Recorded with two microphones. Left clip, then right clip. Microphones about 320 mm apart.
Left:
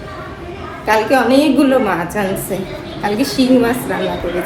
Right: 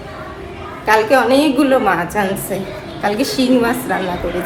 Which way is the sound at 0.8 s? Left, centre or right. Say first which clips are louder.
Right 1 dB; centre.